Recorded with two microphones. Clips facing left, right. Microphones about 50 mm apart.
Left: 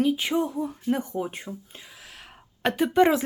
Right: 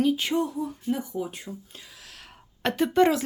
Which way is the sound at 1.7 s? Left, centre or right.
Left.